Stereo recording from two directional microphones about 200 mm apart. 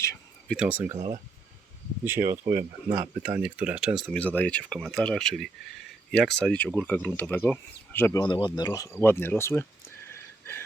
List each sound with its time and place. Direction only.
0.0 s a sound: 15° left (ahead or behind)
0.5 s speech: 5° right (ahead or behind)
0.9 s speech: 25° right (ahead or behind)
2.0 s speech: 10° right (ahead or behind); by 8.2 s 10° left (ahead or behind)
8.2 s speech: 20° left (ahead or behind)
10.1 s a sound: 10° left (ahead or behind)